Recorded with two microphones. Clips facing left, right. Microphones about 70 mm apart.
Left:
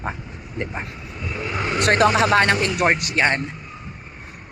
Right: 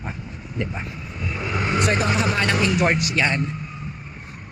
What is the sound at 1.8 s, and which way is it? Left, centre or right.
Speech, left.